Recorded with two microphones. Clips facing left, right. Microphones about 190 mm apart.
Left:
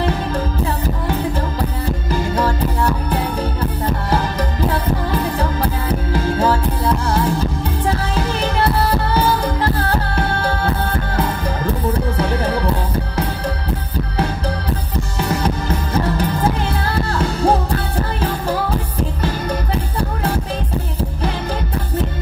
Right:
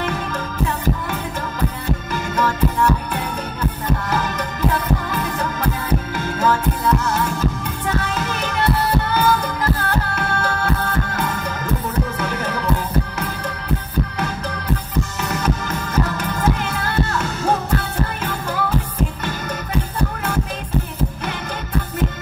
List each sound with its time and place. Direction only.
0.0 s music: 35° left (ahead or behind)
2.0 s music: 35° left (ahead or behind)
15.1 s music: 30° left (ahead or behind)